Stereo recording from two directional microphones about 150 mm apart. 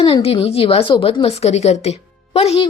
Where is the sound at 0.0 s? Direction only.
40° left (ahead or behind).